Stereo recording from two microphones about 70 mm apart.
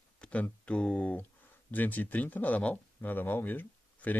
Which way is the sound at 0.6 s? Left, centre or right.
Centre.